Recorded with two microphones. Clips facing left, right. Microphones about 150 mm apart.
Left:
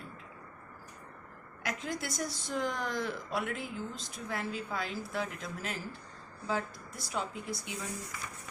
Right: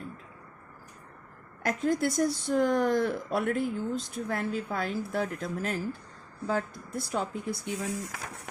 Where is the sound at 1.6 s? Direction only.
50° right (ahead or behind).